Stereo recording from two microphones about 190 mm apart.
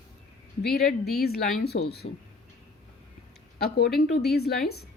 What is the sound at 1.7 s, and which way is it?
Speech, 40° left (ahead or behind).